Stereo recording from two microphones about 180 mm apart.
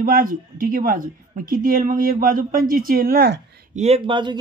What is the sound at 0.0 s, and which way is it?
Speech, 50° right (ahead or behind).